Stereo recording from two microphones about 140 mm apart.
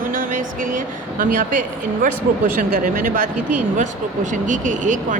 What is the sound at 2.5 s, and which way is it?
Speech, 85° right.